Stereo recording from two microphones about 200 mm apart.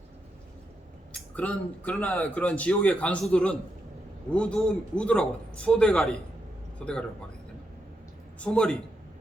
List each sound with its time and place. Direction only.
1.4 s a man's voice: 5° left (ahead or behind)
8.4 s a man's voice: 5° left (ahead or behind)